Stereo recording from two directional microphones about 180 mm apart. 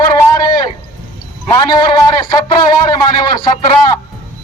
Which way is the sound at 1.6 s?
25° left (ahead or behind).